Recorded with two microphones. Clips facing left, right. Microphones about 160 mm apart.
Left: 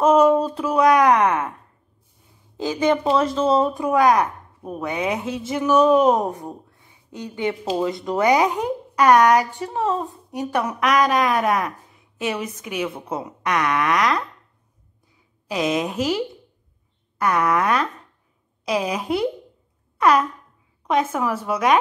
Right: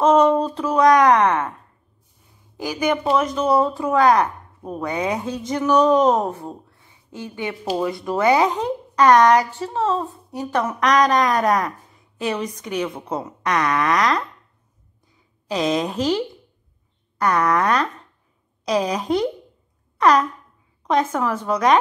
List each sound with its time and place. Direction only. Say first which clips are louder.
0.0 s a woman's voice: even; 10° left (ahead or behind)
2.5 s speech: left 2 dB; 25° left (ahead or behind)
4.9 s a woman's voice: even; 30° right (ahead or behind)
5.4 s a woman's voice: even; 5° left (ahead or behind)
15.4 s speech: right 1 dB; 5° left (ahead or behind)
20.0 s fart: right 1 dB; 5° left (ahead or behind)
20.8 s a woman's voice: right 1 dB; 5° left (ahead or behind)